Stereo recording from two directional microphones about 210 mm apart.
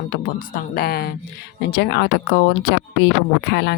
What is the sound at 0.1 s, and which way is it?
Speech, 45° left (ahead or behind).